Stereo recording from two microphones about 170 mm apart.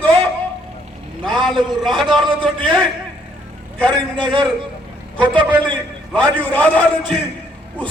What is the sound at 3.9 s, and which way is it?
Speech, 25° right (ahead or behind).